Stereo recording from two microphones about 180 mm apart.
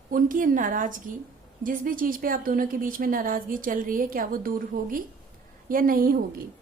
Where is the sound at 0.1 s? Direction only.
50° right (ahead or behind).